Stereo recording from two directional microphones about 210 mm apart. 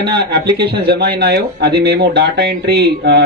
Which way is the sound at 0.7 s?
50° right (ahead or behind).